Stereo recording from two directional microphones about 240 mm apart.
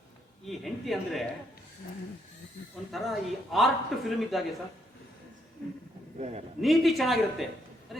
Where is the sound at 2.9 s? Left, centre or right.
Centre.